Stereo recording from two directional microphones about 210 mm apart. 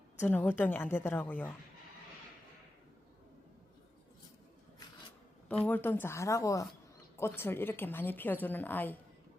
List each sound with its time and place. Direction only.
0.2 s a woman's voice: 10° left (ahead or behind)
5.6 s a woman's voice: 10° left (ahead or behind)